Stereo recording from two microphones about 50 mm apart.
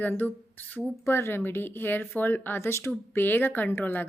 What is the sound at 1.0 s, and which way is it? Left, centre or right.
A woman's voice, left.